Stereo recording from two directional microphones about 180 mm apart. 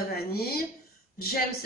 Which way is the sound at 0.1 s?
60° left (ahead or behind).